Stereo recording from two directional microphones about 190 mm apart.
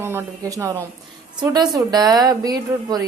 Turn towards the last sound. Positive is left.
turn(degrees=-20)  # may be behind; listen again after turning